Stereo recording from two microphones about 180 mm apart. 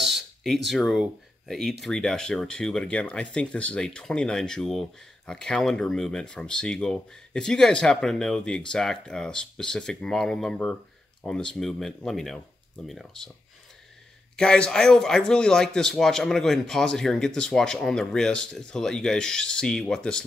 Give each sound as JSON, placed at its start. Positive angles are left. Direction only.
{"t": 0.0, "sound": "a sound", "side_deg": 0}
{"t": 0.7, "sound": "speech", "side_deg": 0}
{"t": 14.3, "sound": "speech", "side_deg": 5}